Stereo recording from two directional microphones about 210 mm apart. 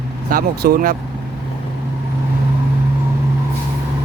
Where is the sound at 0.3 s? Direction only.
45° right (ahead or behind).